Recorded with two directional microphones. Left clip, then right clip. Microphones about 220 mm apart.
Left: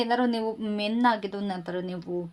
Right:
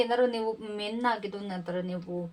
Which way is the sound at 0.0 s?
45° left (ahead or behind).